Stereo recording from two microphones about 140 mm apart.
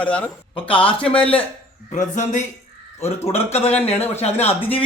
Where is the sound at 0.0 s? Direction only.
10° left (ahead or behind).